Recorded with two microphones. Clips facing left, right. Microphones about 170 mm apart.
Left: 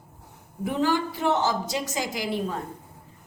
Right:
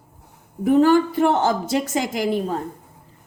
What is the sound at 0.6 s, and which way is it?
A woman's voice, 45° right (ahead or behind).